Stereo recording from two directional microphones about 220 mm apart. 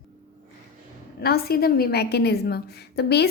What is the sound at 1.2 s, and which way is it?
A woman's voice, 45° left (ahead or behind).